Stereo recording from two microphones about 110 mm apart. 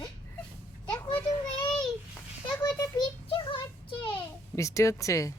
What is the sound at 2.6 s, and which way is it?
Child singing, 40° left (ahead or behind).